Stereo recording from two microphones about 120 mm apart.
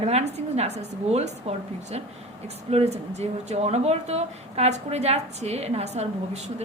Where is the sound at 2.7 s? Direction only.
60° right (ahead or behind).